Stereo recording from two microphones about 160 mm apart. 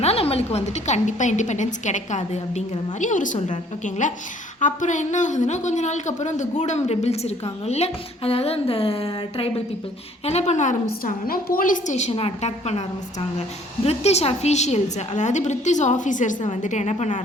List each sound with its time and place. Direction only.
0.0 s speech: 40° left (ahead or behind)